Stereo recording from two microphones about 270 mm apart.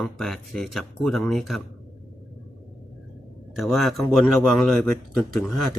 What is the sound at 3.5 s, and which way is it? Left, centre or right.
Speech, centre.